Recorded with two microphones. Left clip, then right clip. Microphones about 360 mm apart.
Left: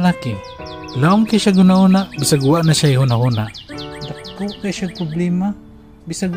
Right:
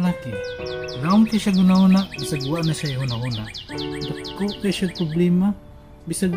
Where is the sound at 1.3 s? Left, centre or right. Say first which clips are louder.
Left 7 dB; left.